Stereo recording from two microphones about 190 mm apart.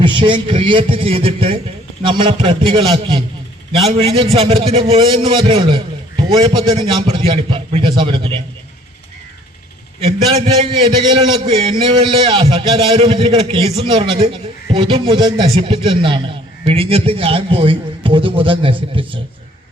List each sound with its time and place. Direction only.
0.0 s a man's voice: 25° right (ahead or behind)
10.4 s a man's voice: 30° right (ahead or behind)